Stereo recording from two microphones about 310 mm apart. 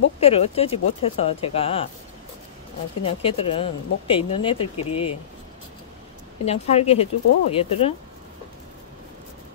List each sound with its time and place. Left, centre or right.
0.2 s speech: centre
3.0 s speech: centre
6.4 s speech: centre